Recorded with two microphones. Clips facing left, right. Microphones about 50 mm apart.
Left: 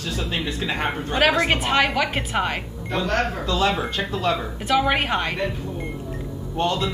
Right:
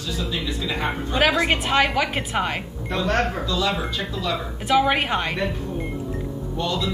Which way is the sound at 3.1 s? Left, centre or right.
Right.